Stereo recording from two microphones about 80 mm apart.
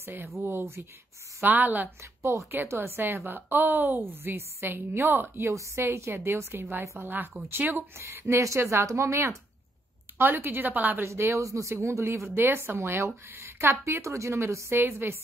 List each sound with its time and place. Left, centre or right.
0.0 s a woman's voice: right
11.1 s speech: right